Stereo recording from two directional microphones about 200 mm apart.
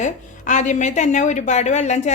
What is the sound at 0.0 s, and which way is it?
A woman's voice, 35° left (ahead or behind).